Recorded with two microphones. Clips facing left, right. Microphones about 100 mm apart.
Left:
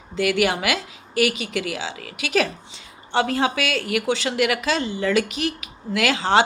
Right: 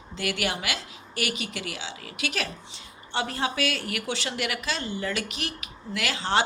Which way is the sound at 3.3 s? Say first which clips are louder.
Left 6 dB; 90° left.